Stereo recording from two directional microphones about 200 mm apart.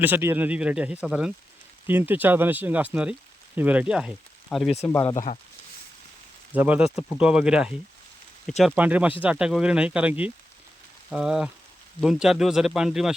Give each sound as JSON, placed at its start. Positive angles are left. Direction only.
{"t": 0.0, "sound": "speech", "side_deg": -10}
{"t": 4.8, "sound": "speech", "side_deg": 10}
{"t": 6.5, "sound": "speech", "side_deg": -10}